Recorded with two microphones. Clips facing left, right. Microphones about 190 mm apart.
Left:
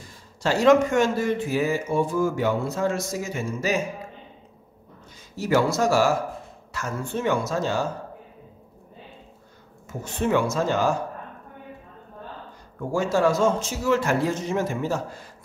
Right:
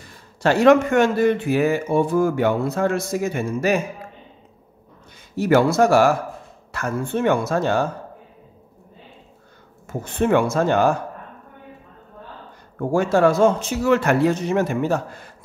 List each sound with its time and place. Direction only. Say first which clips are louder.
0.4 s speech: right 3 dB; 60° right (ahead or behind)
5.3 s speech: right 5 dB; 60° right (ahead or behind)
9.8 s speech: right 5 dB; 55° right (ahead or behind)
12.7 s speech: right 5 dB; 55° right (ahead or behind)